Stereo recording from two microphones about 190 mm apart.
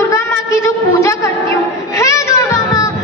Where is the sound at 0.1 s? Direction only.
15° left (ahead or behind).